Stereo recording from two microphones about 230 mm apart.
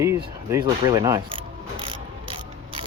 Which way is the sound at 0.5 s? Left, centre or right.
Centre.